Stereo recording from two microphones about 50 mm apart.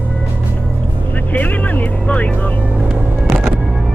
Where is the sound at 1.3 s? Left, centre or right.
Left.